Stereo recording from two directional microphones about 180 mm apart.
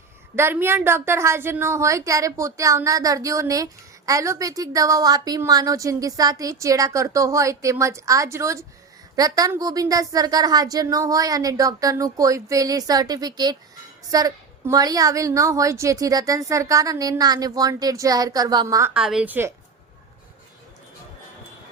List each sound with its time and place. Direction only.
0.3 s a woman's voice: 15° right (ahead or behind)
18.9 s a woman's voice: 5° right (ahead or behind)